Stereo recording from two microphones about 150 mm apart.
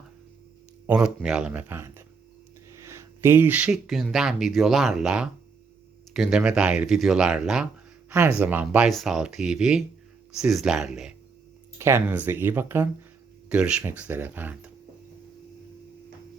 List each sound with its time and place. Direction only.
0.9 s a man's voice: 5° right (ahead or behind)
11.8 s a man's voice: 15° right (ahead or behind)